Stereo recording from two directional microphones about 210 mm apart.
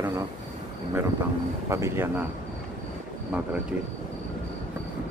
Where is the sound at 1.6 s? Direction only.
15° right (ahead or behind).